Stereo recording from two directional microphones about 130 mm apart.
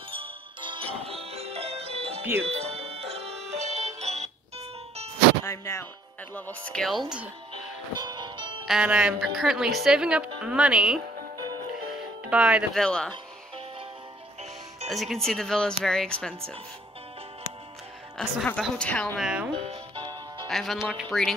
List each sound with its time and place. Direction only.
0.1 s music: 40° right (ahead or behind)
5.4 s a woman's voice: 20° left (ahead or behind); by 7.2 s 5° right (ahead or behind)
7.9 s music: 35° right (ahead or behind)
8.6 s a woman's voice: 5° right (ahead or behind)
12.3 s speech: 10° right (ahead or behind)
12.7 s a woman's voice: 5° left (ahead or behind)
14.9 s a woman's voice: centre (ahead or behind)
18.1 s a woman's voice: 5° left (ahead or behind)
19.1 s speech: 5° right (ahead or behind)
19.5 s music: 45° right (ahead or behind)
20.4 s a woman's voice: centre (ahead or behind)